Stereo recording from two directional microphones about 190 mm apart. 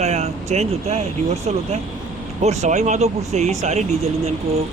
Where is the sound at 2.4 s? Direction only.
35° right (ahead or behind).